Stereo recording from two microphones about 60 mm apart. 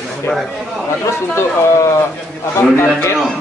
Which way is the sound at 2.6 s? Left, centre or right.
Left.